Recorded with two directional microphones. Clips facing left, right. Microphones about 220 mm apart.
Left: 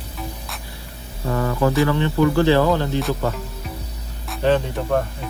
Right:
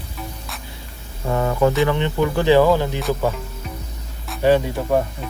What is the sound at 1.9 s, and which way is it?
Speech, 20° right (ahead or behind).